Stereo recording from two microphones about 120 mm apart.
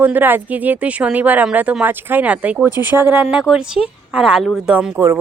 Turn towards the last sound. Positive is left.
turn(degrees=-5)  # may be behind; listen again after turning